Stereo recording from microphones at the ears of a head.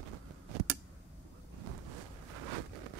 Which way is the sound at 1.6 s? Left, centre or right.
Right.